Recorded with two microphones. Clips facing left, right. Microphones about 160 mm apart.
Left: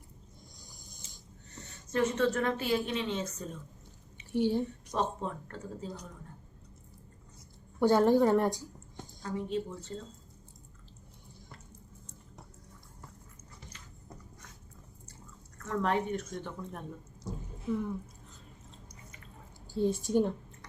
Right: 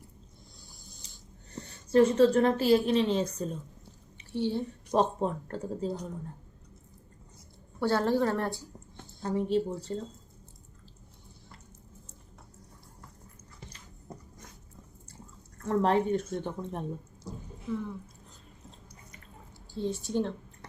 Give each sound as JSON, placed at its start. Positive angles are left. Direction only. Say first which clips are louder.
{"t": 0.6, "sound": "a sound", "louder": "even", "side_deg": 15}
{"t": 1.5, "sound": "a woman's voice", "louder": "right 9 dB", "side_deg": -35}
{"t": 4.3, "sound": "a woman's voice", "louder": "left 2 dB", "side_deg": 15}
{"t": 4.9, "sound": "a woman's voice", "louder": "right 6 dB", "side_deg": -35}
{"t": 7.8, "sound": "a woman's voice", "louder": "left 3 dB", "side_deg": 15}
{"t": 9.2, "sound": "a woman's voice", "louder": "right 6 dB", "side_deg": -35}
{"t": 15.5, "sound": "a woman's voice", "louder": "right 5 dB", "side_deg": -30}
{"t": 19.7, "sound": "a woman's voice", "louder": "left 3 dB", "side_deg": 10}